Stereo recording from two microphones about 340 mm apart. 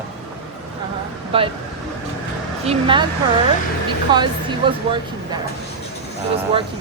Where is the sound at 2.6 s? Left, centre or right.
Centre.